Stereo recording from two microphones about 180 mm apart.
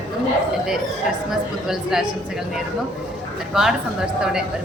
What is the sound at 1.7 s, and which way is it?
Speech, 5° right (ahead or behind).